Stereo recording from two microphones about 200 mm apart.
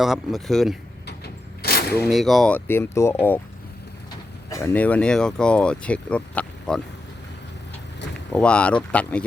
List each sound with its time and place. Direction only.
0.0 s speech: centre (ahead or behind)
1.0 s vehicle: 50° left (ahead or behind)
2.0 s speech: centre (ahead or behind)
4.4 s speech: 15° left (ahead or behind)
8.3 s speech: 5° left (ahead or behind)